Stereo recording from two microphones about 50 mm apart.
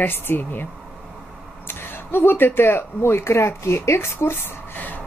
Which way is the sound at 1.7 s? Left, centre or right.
Left.